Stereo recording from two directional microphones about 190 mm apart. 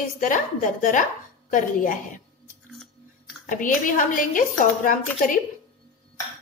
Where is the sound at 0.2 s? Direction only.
40° left (ahead or behind).